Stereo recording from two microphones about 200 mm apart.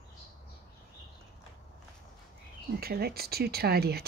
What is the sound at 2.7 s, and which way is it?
Speech, 50° right (ahead or behind).